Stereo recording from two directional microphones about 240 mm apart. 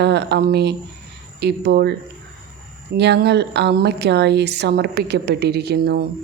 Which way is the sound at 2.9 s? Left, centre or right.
Right.